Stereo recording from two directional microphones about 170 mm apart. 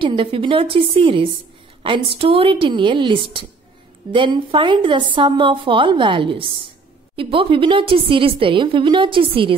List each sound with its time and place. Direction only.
0.0 s a woman's voice: 30° right (ahead or behind)